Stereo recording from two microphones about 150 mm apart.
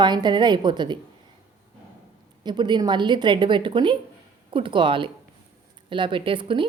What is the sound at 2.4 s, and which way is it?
A woman's voice, 30° right (ahead or behind).